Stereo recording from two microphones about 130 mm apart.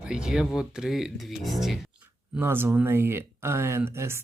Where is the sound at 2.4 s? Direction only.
15° right (ahead or behind).